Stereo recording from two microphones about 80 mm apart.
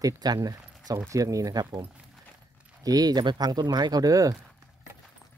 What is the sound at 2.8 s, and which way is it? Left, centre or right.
Speech, right.